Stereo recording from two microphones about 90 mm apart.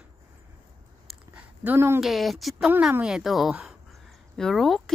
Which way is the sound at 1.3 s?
20° right (ahead or behind).